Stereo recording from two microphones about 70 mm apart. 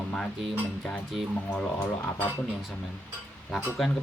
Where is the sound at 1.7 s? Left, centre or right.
Left.